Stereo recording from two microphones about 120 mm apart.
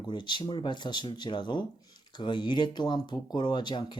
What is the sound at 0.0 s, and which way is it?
Speech, 40° left (ahead or behind).